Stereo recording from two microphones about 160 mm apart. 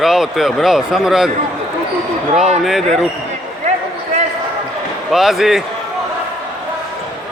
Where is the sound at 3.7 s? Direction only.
45° right (ahead or behind).